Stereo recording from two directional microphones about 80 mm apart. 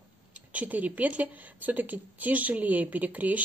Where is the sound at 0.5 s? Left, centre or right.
Centre.